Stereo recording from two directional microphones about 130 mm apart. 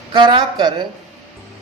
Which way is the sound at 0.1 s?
35° right (ahead or behind).